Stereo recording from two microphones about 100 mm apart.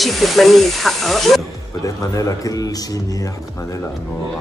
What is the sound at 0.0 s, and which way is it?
Speech, centre (ahead or behind).